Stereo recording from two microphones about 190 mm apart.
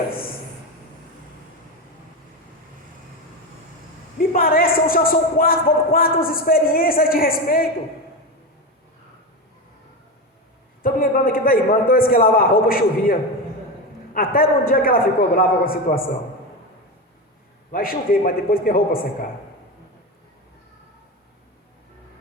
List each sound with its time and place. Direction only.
4.2 s speech: 50° left (ahead or behind)
10.8 s a man's voice: 50° left (ahead or behind)
17.7 s a man's voice: 50° left (ahead or behind)